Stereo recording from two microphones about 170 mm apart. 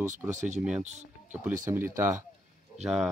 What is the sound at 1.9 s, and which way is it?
Speech, 15° right (ahead or behind).